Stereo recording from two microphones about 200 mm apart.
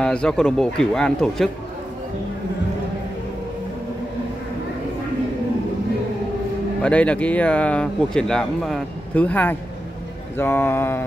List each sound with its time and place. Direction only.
0.0 s speech: 5° left (ahead or behind)
6.8 s speech: 5° left (ahead or behind)